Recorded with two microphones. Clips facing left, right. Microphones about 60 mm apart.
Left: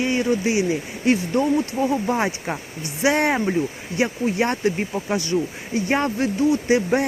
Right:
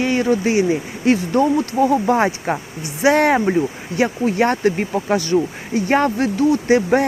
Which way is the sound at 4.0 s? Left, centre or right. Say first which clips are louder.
Right 4 dB; right.